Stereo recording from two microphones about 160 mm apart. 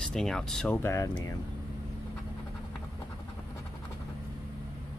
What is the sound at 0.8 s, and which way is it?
Speech, 20° left (ahead or behind).